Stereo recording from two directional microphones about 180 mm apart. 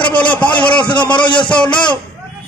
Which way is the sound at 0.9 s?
25° left (ahead or behind).